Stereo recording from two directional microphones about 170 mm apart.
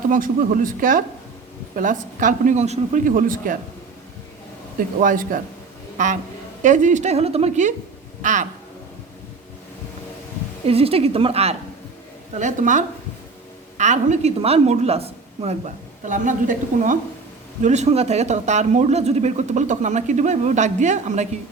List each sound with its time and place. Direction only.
0.1 s speech: 50° right (ahead or behind)
4.9 s speech: 50° right (ahead or behind)
10.7 s a woman's voice: 35° right (ahead or behind)